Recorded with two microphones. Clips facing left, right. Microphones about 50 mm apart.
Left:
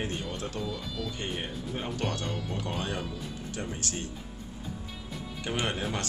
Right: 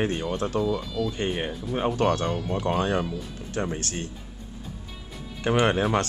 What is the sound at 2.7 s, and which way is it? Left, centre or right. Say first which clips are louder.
Speech: right 11 dB; right.